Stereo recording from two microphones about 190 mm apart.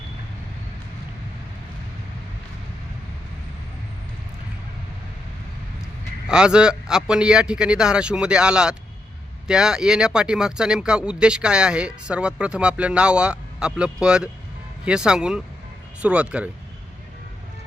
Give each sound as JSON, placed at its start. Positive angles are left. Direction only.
{"t": 6.2, "sound": "speech", "side_deg": -5}